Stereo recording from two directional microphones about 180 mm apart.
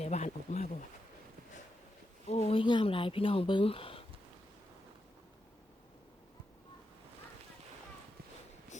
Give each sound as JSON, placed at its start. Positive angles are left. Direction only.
{"t": 0.0, "sound": "speech", "side_deg": 40}
{"t": 2.2, "sound": "speech", "side_deg": 35}
{"t": 8.7, "sound": "a sound", "side_deg": 40}